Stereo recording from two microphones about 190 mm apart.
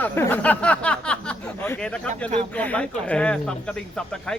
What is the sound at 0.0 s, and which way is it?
Speech, 10° left (ahead or behind).